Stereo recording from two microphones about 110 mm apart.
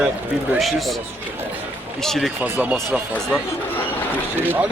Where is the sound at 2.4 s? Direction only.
15° right (ahead or behind).